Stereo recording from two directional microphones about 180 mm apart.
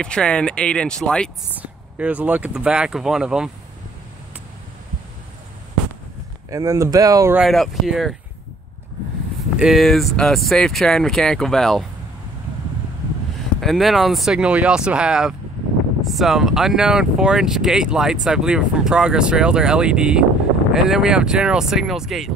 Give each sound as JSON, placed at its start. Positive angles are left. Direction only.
{"t": 0.0, "sound": "speech", "side_deg": 5}
{"t": 1.6, "sound": "speech", "side_deg": -10}
{"t": 6.5, "sound": "speech", "side_deg": -20}
{"t": 7.3, "sound": "speech", "side_deg": 0}
{"t": 9.6, "sound": "speech", "side_deg": 0}
{"t": 13.6, "sound": "speech", "side_deg": 0}